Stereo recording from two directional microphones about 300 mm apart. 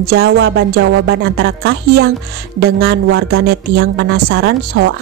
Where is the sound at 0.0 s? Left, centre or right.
Right.